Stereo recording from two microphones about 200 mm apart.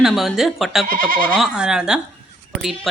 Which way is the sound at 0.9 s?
45° right (ahead or behind).